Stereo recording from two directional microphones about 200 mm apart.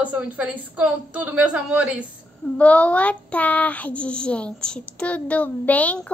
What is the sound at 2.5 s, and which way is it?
Speech, 5° left (ahead or behind).